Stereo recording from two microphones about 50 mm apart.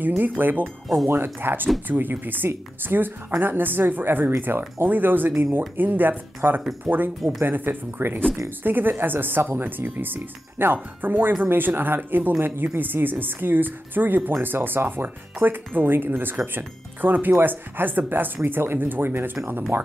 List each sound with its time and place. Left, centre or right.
0.2 s speech: right